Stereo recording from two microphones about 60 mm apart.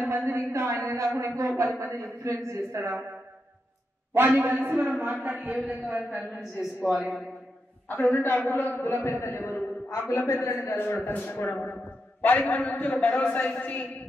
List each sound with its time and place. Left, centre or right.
0.1 s a man's voice: right
1.8 s a man's voice: right
2.2 s a man's voice: right
4.6 s a man's voice: right
6.1 s a man's voice: centre
7.9 s a man's voice: left
9.8 s a man's voice: left